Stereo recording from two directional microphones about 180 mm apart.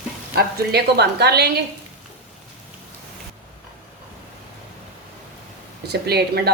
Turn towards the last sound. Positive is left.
turn(degrees=-65)  # may be behind; listen again after turning